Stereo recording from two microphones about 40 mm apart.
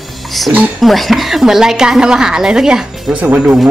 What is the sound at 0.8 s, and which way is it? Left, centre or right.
A woman's voice, centre.